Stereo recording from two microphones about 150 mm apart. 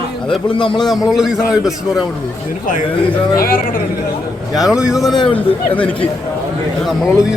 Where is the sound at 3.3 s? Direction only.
75° left (ahead or behind).